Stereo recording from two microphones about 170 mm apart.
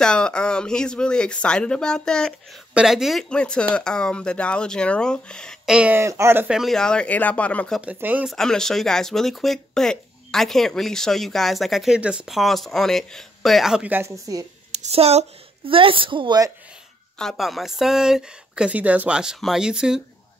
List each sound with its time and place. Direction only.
0.0 s speech: 5° left (ahead or behind)
7.8 s speech: 10° right (ahead or behind)
8.4 s speech: 5° left (ahead or behind); by 14.4 s 20° right (ahead or behind)
14.7 s a woman's voice: 40° right (ahead or behind)
17.2 s speech: centre (ahead or behind)